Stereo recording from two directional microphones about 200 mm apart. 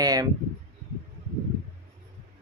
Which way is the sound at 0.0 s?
20° right (ahead or behind).